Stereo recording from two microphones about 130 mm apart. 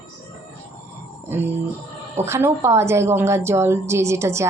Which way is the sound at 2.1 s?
20° right (ahead or behind).